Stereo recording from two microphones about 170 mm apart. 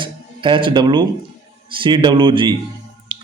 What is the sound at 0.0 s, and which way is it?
Music, 30° right (ahead or behind).